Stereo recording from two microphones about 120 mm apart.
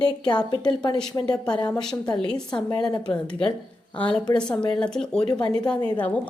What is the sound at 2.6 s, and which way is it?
Speech, 30° left (ahead or behind).